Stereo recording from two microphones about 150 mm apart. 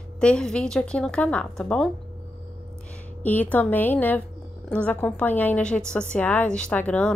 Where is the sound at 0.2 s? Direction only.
5° left (ahead or behind).